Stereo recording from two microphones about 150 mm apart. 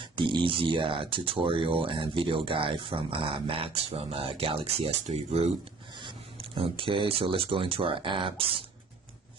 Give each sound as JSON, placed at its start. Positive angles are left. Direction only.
{"t": 0.0, "sound": "speech", "side_deg": -35}
{"t": 6.6, "sound": "speech", "side_deg": -35}